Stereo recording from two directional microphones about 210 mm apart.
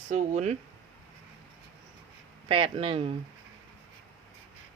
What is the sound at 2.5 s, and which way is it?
Speech, 25° right (ahead or behind).